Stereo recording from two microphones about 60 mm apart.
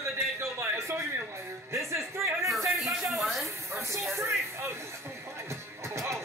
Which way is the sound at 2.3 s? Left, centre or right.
Centre.